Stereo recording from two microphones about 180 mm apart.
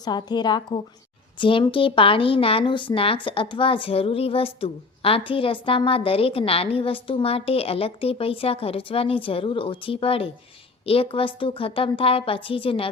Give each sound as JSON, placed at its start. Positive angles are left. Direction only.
{"t": 0.0, "sound": "a woman's voice", "side_deg": 25}